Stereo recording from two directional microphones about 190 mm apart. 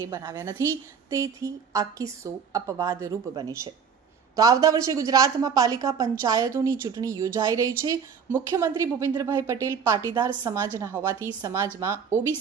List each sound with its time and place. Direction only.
0.1 s a woman's voice: 15° right (ahead or behind)